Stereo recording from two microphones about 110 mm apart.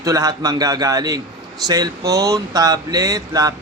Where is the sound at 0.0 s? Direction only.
30° right (ahead or behind).